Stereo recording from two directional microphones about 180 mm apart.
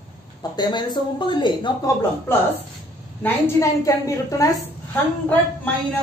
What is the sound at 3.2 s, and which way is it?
A woman's voice, 15° left (ahead or behind).